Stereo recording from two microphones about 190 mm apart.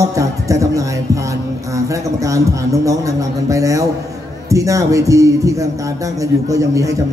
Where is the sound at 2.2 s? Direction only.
15° right (ahead or behind).